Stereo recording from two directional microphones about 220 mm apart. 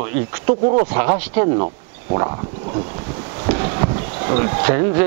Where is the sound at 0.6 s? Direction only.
35° right (ahead or behind).